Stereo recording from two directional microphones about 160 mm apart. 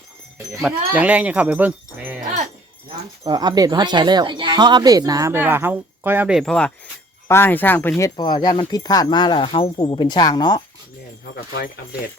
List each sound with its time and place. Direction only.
0.6 s speech: 10° right (ahead or behind)
3.2 s speech: 25° right (ahead or behind); by 6.4 s 10° right (ahead or behind)
6.4 s a sound: 5° left (ahead or behind)
7.3 s speech: 15° left (ahead or behind)
8.1 s speech: 25° left (ahead or behind)
11.5 s speech: 65° left (ahead or behind)